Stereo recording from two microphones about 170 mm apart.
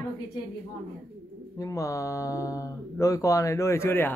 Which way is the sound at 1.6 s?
20° left (ahead or behind).